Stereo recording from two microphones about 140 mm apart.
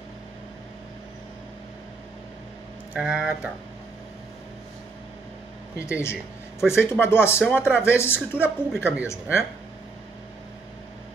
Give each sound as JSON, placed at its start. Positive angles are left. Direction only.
{"t": 2.9, "sound": "speech", "side_deg": -5}
{"t": 5.8, "sound": "a woman's voice", "side_deg": 20}